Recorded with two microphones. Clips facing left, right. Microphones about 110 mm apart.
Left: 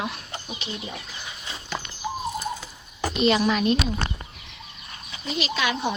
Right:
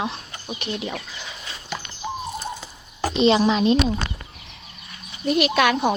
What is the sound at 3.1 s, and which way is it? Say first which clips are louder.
Speech: right 4 dB; 25° right (ahead or behind).